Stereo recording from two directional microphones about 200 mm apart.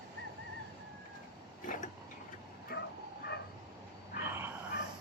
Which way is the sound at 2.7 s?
50° left (ahead or behind).